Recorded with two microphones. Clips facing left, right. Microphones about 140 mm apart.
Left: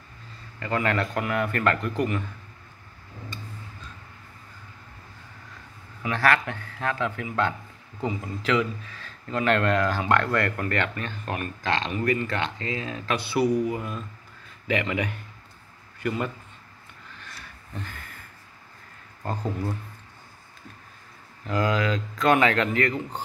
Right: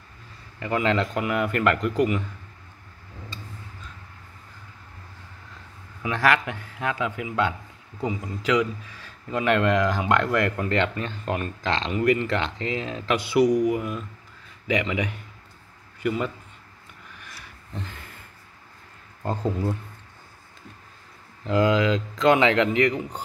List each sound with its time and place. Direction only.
0.6 s speech: 15° right (ahead or behind)
6.0 s speech: 15° right (ahead or behind)
19.2 s speech: 20° right (ahead or behind)
21.5 s speech: 20° right (ahead or behind)